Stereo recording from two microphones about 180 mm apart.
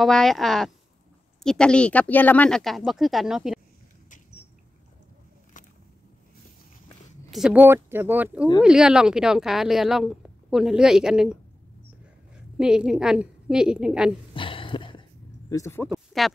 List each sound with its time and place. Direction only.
0.0 s speech: centre (ahead or behind)
7.2 s speech: centre (ahead or behind)
12.5 s speech: 5° right (ahead or behind)
14.3 s a sound: 30° left (ahead or behind)
15.5 s speech: 15° left (ahead or behind)
16.1 s speech: centre (ahead or behind)